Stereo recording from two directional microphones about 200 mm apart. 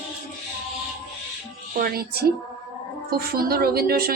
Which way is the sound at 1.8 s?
50° right (ahead or behind).